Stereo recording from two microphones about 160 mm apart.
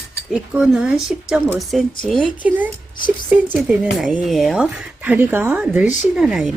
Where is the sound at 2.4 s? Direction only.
10° right (ahead or behind).